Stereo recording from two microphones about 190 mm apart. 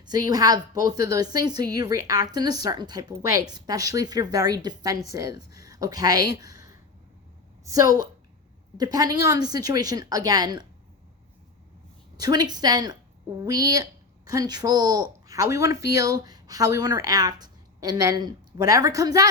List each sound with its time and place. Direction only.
0.0 s speech: 20° right (ahead or behind)
7.6 s a woman's voice: 20° right (ahead or behind)
12.1 s speech: 20° right (ahead or behind)